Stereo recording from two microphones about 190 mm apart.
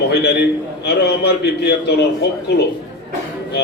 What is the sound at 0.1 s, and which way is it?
A man's voice, 60° left (ahead or behind).